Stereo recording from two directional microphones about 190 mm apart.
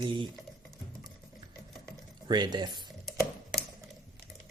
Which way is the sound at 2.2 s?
25° right (ahead or behind).